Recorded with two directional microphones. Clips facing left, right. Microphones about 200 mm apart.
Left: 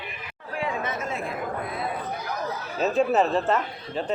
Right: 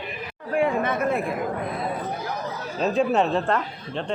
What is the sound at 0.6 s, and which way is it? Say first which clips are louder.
Speech: right 7 dB; 60° right (ahead or behind).